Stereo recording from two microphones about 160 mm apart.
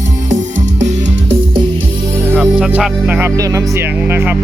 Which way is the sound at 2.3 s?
10° right (ahead or behind).